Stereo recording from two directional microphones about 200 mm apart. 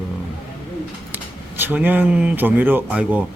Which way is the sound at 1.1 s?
10° right (ahead or behind).